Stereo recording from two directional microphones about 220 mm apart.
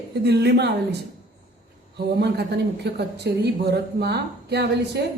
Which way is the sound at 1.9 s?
50° right (ahead or behind).